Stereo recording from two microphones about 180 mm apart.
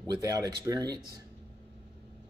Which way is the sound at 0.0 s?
20° right (ahead or behind).